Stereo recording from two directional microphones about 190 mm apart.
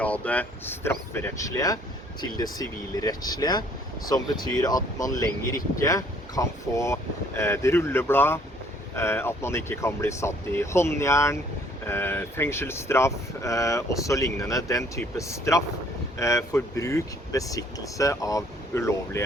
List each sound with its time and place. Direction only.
0.0 s speech: 10° left (ahead or behind)